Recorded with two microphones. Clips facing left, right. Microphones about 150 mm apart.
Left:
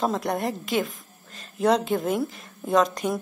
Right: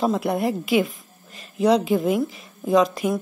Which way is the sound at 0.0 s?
5° right (ahead or behind).